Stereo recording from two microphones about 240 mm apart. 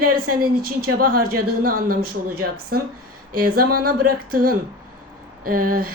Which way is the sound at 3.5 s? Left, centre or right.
Right.